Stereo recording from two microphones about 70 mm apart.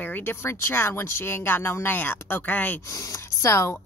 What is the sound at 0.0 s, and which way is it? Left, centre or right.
Speech, left.